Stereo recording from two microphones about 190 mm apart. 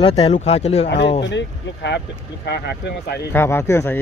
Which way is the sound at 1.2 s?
70° left (ahead or behind).